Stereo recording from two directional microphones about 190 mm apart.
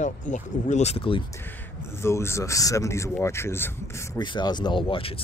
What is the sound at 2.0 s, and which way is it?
Speech, 15° left (ahead or behind).